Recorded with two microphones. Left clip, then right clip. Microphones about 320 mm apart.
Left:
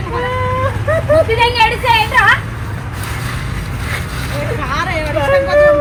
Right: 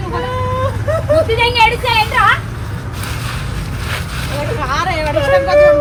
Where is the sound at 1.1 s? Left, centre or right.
Centre.